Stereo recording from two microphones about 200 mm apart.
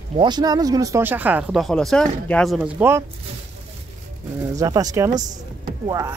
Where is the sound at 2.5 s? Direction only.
10° right (ahead or behind).